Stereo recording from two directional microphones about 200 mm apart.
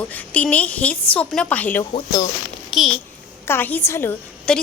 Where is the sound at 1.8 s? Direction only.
20° left (ahead or behind).